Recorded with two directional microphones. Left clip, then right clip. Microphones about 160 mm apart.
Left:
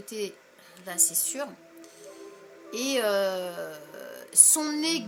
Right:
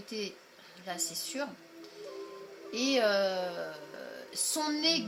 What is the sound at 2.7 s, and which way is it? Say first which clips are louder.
Music: left 2 dB; 35° left (ahead or behind).